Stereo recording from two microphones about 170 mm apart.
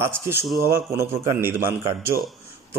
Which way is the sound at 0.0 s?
15° right (ahead or behind).